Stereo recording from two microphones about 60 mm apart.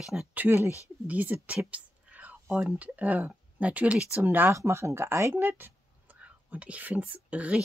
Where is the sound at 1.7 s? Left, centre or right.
Right.